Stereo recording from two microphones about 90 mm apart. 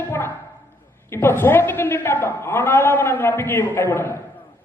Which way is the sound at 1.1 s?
30° left (ahead or behind).